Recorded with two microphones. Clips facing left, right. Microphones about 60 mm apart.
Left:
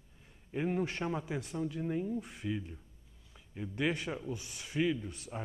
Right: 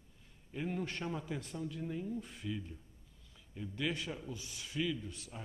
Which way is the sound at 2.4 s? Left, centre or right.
Left.